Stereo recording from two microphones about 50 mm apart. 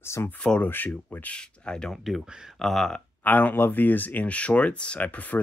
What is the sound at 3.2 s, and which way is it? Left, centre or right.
Speech, left.